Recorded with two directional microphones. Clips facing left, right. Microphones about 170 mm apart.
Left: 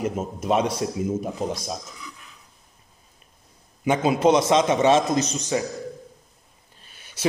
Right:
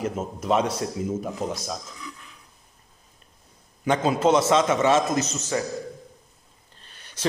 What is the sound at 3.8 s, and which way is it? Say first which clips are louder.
A man's voice: left 2 dB; 10° left (ahead or behind).